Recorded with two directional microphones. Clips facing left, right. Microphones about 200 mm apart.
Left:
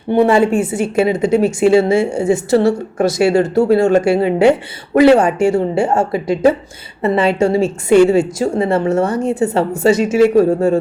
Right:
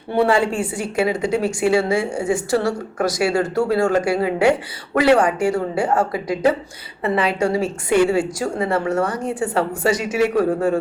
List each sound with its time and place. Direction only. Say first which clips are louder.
0.1 s a woman's voice: left 6 dB; 20° left (ahead or behind)